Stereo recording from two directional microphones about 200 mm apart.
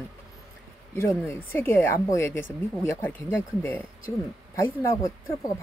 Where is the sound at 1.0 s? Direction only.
10° left (ahead or behind).